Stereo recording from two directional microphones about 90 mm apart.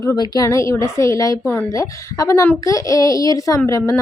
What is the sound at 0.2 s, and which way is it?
A woman's voice, 40° left (ahead or behind).